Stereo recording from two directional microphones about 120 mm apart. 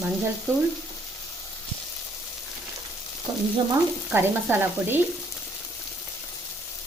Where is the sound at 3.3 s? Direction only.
35° right (ahead or behind).